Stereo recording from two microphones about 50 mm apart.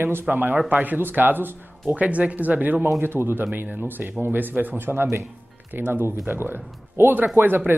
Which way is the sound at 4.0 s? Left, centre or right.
Right.